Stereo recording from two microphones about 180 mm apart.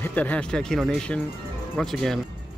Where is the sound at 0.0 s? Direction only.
10° left (ahead or behind).